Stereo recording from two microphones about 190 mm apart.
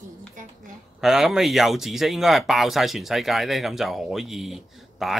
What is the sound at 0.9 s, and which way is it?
Speech, centre (ahead or behind).